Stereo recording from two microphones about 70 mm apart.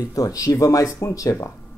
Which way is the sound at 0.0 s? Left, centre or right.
Left.